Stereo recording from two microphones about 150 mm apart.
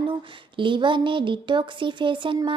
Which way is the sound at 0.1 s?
35° right (ahead or behind).